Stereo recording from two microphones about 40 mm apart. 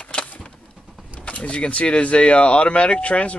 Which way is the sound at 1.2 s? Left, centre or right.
Left.